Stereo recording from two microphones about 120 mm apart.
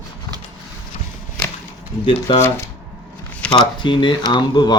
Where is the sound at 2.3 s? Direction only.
40° left (ahead or behind).